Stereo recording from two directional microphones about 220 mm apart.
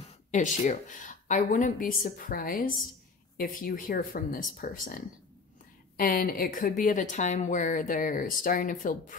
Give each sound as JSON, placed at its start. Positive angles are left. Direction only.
{"t": 0.3, "sound": "a woman's voice", "side_deg": 35}